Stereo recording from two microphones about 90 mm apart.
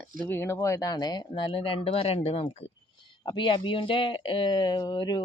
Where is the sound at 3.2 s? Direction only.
60° left (ahead or behind).